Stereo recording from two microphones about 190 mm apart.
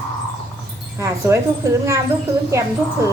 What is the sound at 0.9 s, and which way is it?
Speech, 15° right (ahead or behind).